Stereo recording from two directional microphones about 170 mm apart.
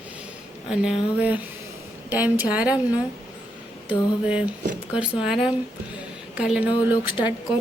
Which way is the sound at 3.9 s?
5° right (ahead or behind).